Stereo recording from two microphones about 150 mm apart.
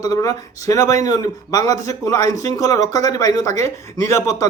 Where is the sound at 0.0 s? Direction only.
20° left (ahead or behind).